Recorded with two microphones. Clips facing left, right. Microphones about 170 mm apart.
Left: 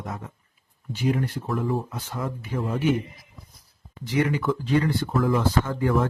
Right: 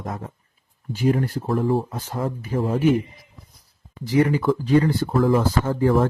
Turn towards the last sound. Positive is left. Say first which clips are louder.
# right 4 dB
turn(degrees=-30)  # may be behind; listen again after turning